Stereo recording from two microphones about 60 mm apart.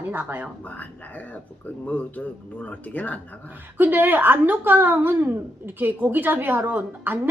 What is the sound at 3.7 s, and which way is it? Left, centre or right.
Speech, right.